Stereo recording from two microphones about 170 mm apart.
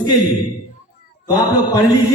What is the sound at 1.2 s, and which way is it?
Speech, 20° left (ahead or behind).